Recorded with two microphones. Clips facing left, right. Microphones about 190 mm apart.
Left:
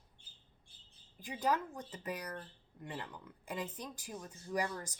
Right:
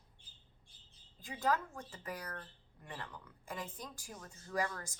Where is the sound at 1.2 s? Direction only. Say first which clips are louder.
Left 1 dB; 15° left (ahead or behind).